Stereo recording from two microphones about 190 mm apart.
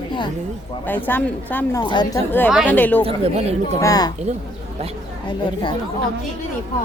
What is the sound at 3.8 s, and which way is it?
Speech, 20° left (ahead or behind).